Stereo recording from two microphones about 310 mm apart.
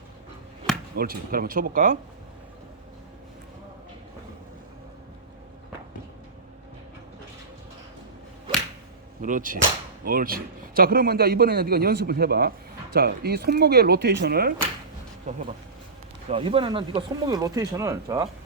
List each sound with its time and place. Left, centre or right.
0.9 s a man's voice: right
9.2 s a man's voice: right